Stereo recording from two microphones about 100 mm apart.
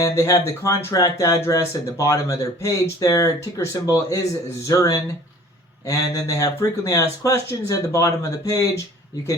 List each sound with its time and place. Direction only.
0.0 s speech: 30° left (ahead or behind)